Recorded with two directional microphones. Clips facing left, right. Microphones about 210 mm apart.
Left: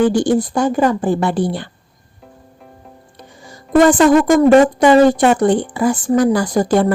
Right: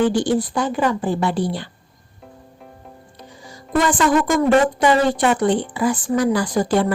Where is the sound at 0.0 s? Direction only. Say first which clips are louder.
Left 4 dB; 45° left (ahead or behind).